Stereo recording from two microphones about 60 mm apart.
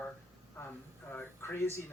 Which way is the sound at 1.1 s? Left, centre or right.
Left.